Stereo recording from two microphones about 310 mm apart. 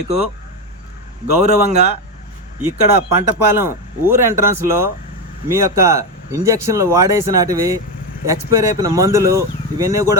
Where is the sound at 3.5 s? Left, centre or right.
Centre.